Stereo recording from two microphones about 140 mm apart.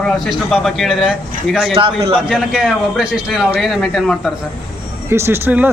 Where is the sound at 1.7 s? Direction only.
40° right (ahead or behind).